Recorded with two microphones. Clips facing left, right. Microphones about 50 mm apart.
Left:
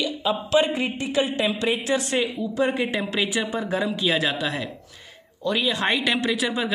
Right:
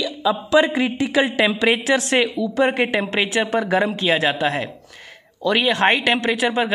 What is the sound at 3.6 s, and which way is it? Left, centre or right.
Speech, right.